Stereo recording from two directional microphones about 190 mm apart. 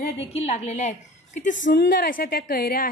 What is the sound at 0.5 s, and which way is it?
A woman's voice, 35° left (ahead or behind).